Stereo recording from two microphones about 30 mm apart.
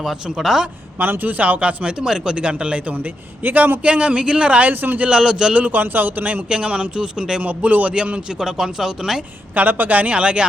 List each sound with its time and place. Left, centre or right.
0.3 s speech: centre
0.9 s a man's voice: right
1.5 s speech: right
2.9 s a man's voice: right
3.8 s speech: right
4.6 s a man's voice: right
5.0 s speech: right
5.7 s speech: right
6.5 s speech: right
7.4 s a man's voice: right
8.4 s speech: centre
9.6 s a man's voice: right
10.2 s speech: right